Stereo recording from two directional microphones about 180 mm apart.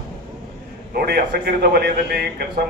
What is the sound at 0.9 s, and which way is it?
A man's voice, 60° right (ahead or behind).